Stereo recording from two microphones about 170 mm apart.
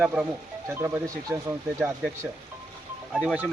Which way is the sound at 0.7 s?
15° right (ahead or behind).